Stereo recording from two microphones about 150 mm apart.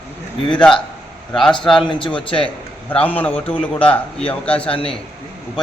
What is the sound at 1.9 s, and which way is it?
Speech, 35° left (ahead or behind).